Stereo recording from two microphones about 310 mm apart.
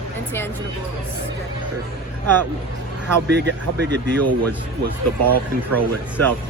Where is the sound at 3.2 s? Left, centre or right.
Right.